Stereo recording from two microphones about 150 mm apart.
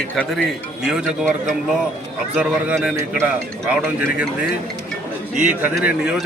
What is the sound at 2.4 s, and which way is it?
A man's voice, 10° right (ahead or behind).